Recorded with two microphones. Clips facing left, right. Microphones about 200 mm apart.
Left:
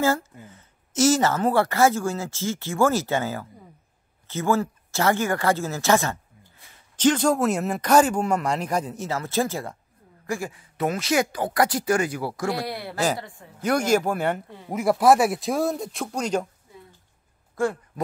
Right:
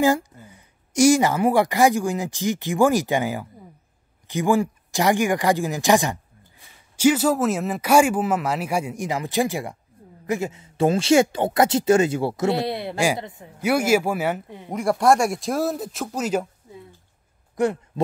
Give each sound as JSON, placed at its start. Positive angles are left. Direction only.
{"t": 0.0, "sound": "speech", "side_deg": -15}
{"t": 17.6, "sound": "speech", "side_deg": -20}